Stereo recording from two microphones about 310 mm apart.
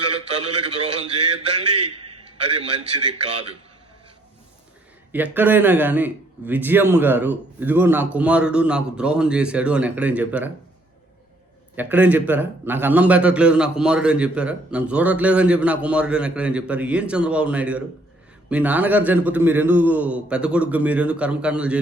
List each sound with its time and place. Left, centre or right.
0.4 s a man's voice: right
5.1 s a man's voice: centre
11.8 s a man's voice: centre